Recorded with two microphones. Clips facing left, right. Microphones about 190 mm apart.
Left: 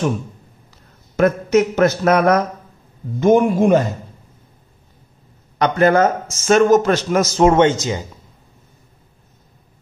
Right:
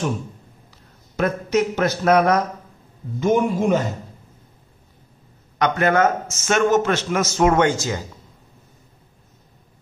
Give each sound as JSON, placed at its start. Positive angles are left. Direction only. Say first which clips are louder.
{"t": 1.1, "sound": "a man's voice", "louder": "left 6 dB", "side_deg": 50}
{"t": 5.6, "sound": "a man's voice", "louder": "left 4 dB", "side_deg": 35}